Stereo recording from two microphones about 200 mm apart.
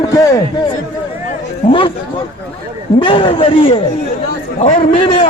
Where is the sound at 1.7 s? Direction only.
25° left (ahead or behind).